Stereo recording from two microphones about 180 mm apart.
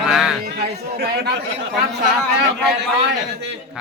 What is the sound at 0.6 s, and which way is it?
Speech, 60° right (ahead or behind).